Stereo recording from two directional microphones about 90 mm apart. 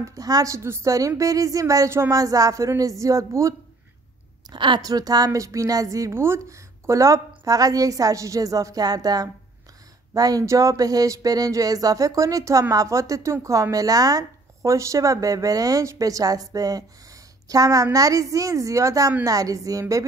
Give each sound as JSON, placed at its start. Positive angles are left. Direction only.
{"t": 0.0, "sound": "speech", "side_deg": -40}
{"t": 4.5, "sound": "a woman's voice", "side_deg": -60}
{"t": 4.8, "sound": "speech", "side_deg": -45}